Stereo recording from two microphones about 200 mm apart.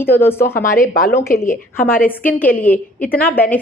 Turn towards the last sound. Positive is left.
turn(degrees=10)  # may be behind; listen again after turning